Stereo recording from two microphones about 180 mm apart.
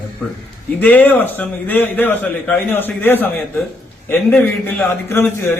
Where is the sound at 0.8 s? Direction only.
10° left (ahead or behind).